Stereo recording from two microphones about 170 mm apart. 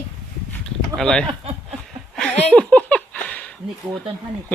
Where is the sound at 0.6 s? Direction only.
5° left (ahead or behind).